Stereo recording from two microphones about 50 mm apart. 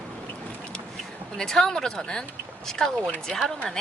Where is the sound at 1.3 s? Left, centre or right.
Centre.